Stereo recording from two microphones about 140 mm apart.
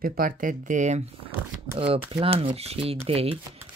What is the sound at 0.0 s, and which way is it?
Speech, 90° right.